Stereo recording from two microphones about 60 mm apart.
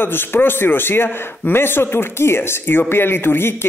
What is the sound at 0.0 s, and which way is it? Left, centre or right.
A man's voice, left.